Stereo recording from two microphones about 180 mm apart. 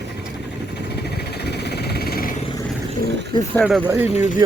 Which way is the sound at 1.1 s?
65° left (ahead or behind).